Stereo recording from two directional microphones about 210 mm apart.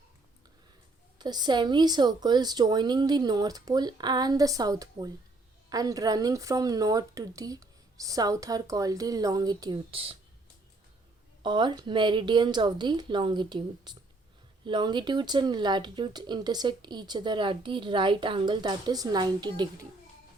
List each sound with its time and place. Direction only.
1.2 s speech: 20° right (ahead or behind)
11.4 s speech: 20° right (ahead or behind)